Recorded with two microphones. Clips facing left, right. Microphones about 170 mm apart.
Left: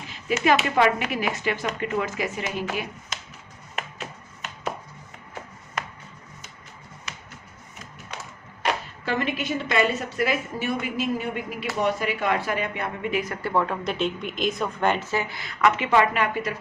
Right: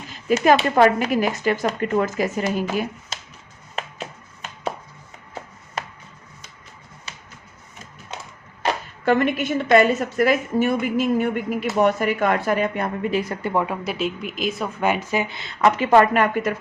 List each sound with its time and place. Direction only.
0.3 s a woman's voice: 40° right (ahead or behind)
9.0 s a woman's voice: 50° right (ahead or behind); by 13.5 s 30° right (ahead or behind)
13.5 s a woman's voice: 10° right (ahead or behind); by 16.6 s 50° right (ahead or behind)